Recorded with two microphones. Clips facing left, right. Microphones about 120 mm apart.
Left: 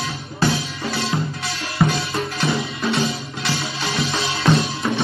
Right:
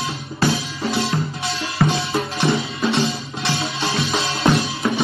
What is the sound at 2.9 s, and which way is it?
Music, 25° right (ahead or behind).